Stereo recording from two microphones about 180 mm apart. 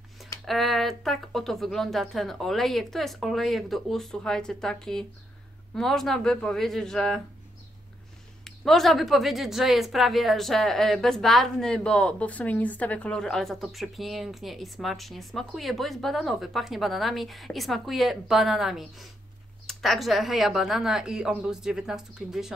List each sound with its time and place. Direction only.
0.5 s a woman's voice: centre (ahead or behind)
8.5 s a woman's voice: centre (ahead or behind)